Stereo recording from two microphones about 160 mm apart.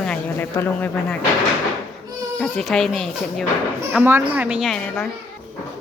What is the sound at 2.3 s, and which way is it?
Speech, 5° left (ahead or behind).